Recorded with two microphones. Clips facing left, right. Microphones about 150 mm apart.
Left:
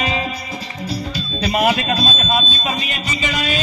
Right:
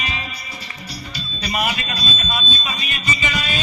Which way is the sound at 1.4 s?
90° left.